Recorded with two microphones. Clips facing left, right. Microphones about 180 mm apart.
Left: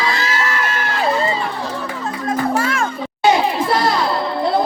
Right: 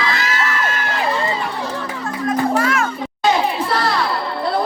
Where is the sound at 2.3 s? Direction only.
30° left (ahead or behind).